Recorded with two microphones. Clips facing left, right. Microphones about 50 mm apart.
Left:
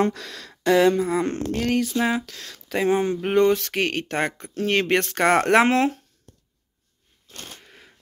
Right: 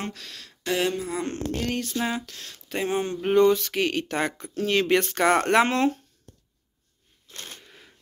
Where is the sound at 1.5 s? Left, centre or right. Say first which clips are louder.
Left 5 dB; left.